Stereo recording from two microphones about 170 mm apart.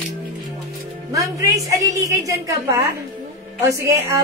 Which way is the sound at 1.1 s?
20° right (ahead or behind).